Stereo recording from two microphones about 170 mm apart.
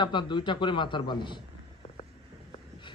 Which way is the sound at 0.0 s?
25° left (ahead or behind).